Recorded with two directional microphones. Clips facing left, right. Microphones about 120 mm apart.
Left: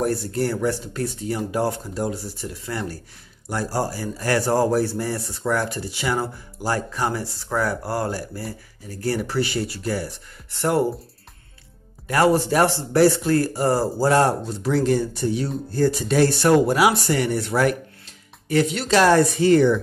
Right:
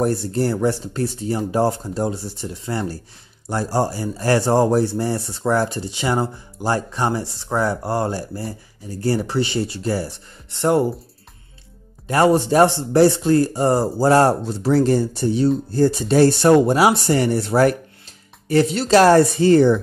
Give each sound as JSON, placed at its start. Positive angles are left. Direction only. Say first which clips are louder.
{"t": 0.0, "sound": "speech", "louder": "right 3 dB", "side_deg": -30}
{"t": 12.1, "sound": "speech", "louder": "right 3 dB", "side_deg": -25}
{"t": 14.6, "sound": "speech", "louder": "right 4 dB", "side_deg": -35}